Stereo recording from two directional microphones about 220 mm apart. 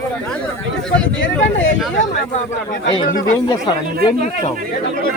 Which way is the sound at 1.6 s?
60° left (ahead or behind).